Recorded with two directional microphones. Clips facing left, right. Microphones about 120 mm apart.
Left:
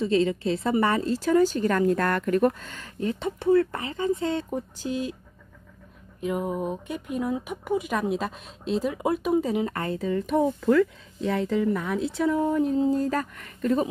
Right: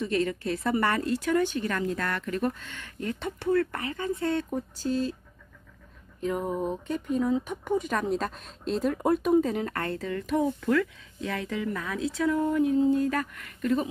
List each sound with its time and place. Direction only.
0.0 s speech: 25° left (ahead or behind)
3.0 s speech: 20° left (ahead or behind)
6.2 s speech: 5° left (ahead or behind); by 13.8 s 35° left (ahead or behind)